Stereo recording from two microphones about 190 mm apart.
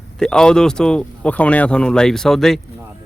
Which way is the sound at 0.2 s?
5° left (ahead or behind).